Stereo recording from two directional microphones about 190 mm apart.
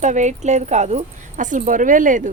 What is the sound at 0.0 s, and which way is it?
Speech, 40° right (ahead or behind).